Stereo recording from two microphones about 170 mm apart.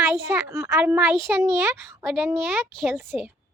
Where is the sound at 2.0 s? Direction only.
5° right (ahead or behind).